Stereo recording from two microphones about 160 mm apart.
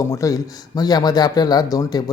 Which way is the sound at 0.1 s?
20° left (ahead or behind).